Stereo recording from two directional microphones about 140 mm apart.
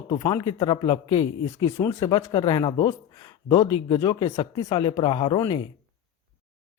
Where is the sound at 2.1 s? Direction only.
35° left (ahead or behind).